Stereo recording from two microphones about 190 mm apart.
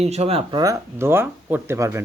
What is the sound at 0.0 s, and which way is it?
Speech, 35° right (ahead or behind).